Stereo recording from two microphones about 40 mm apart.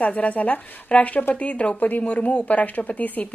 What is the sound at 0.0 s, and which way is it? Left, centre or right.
A woman's voice, left.